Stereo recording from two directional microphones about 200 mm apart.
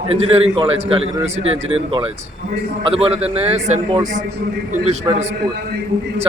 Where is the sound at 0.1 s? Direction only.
30° right (ahead or behind).